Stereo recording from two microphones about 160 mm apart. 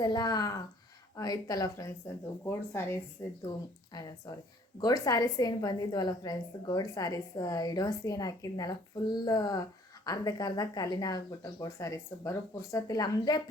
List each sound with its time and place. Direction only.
0.0 s a woman's voice: 25° left (ahead or behind)
4.8 s a woman's voice: 25° left (ahead or behind)